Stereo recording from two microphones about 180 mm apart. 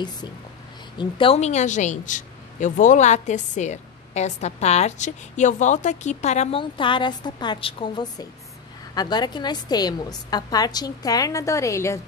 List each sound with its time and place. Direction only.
0.9 s a woman's voice: 30° left (ahead or behind)
6.6 s a woman's voice: 25° left (ahead or behind)